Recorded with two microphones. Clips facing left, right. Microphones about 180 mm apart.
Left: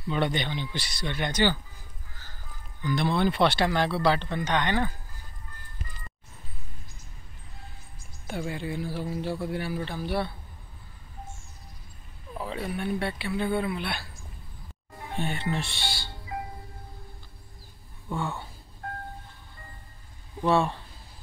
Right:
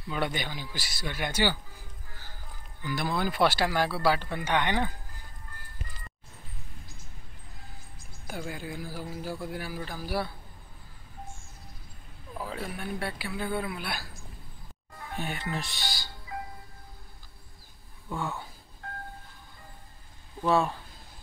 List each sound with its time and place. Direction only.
0.1 s a man's voice: 5° right (ahead or behind)
2.8 s speech: 5° right (ahead or behind)
8.3 s a man's voice: centre (ahead or behind)
12.4 s a man's voice: centre (ahead or behind)
15.1 s a man's voice: 5° right (ahead or behind)
15.6 s speech: 30° left (ahead or behind)
18.1 s a man's voice: centre (ahead or behind)
20.4 s a man's voice: centre (ahead or behind)